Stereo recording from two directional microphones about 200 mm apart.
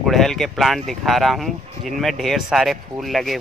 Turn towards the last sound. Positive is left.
turn(degrees=0)  # may be behind; listen again after turning